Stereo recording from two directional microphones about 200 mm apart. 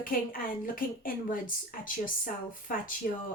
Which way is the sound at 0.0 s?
45° left (ahead or behind).